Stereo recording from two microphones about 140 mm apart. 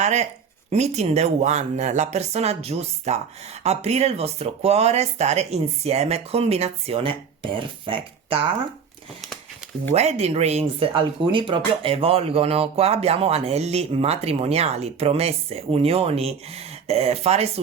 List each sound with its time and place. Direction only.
0.0 s speech: 55° right (ahead or behind); by 8.4 s 40° right (ahead or behind)
9.9 s speech: 50° right (ahead or behind)